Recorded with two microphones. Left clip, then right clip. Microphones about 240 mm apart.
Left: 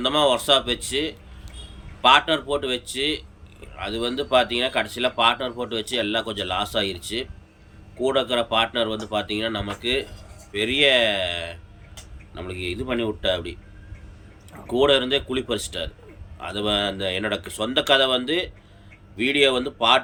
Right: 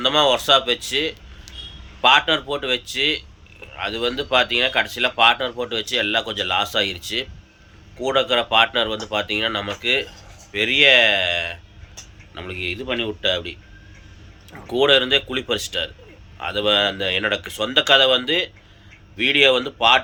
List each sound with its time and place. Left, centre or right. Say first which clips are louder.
0.0 s speech: right 3 dB; centre
1.5 s a sound: right 8 dB; left
2.0 s speech: right 1 dB; centre
14.7 s speech: right 3 dB; centre